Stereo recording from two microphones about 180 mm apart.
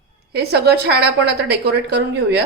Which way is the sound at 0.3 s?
65° right (ahead or behind).